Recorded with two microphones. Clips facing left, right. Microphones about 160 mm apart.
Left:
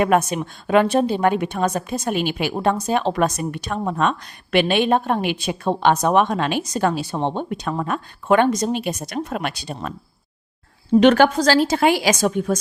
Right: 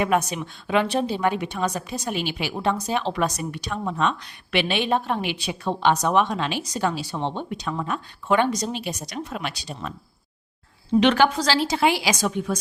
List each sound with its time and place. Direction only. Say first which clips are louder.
0.0 s a woman's voice: left 4 dB; 50° left (ahead or behind)
11.0 s a woman's voice: left 5 dB; 45° left (ahead or behind)